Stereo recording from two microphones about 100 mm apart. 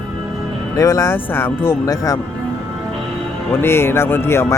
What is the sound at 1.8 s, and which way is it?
Speech, 35° left (ahead or behind).